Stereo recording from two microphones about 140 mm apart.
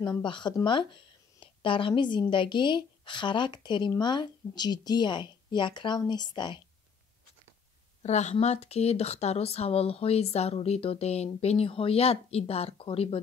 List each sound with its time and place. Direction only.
0.2 s a woman's voice: 35° left (ahead or behind)
8.0 s speech: 55° left (ahead or behind)